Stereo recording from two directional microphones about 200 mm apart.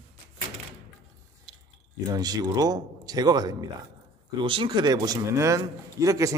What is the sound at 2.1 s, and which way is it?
A man's voice, 20° right (ahead or behind).